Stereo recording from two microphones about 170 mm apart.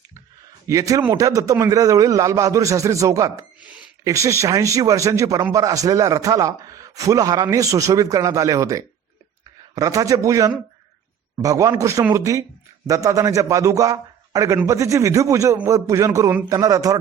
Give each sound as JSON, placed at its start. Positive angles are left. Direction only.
{"t": 0.7, "sound": "speech", "side_deg": -20}